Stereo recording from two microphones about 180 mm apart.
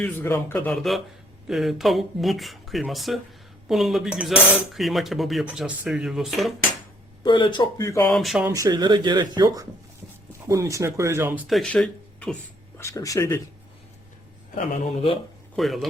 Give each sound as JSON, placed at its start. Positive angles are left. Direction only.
{"t": 0.0, "sound": "speech", "side_deg": 10}
{"t": 1.5, "sound": "cutlery", "side_deg": 0}
{"t": 7.2, "sound": "speech", "side_deg": 25}
{"t": 8.1, "sound": "cutlery", "side_deg": 0}
{"t": 8.4, "sound": "speech", "side_deg": -20}
{"t": 11.4, "sound": "speech", "side_deg": 0}
{"t": 12.8, "sound": "speech", "side_deg": 20}
{"t": 15.5, "sound": "cutlery", "side_deg": 0}